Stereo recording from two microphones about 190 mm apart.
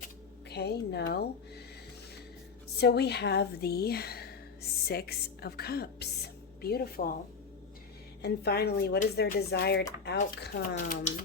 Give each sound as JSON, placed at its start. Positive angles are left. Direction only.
{"t": 0.5, "sound": "speech", "side_deg": 60}
{"t": 2.7, "sound": "a woman's voice", "side_deg": 60}
{"t": 8.2, "sound": "speech", "side_deg": 60}